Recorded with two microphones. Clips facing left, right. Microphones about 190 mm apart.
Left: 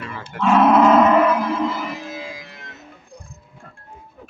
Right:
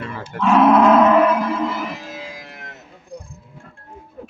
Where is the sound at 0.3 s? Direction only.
40° right (ahead or behind).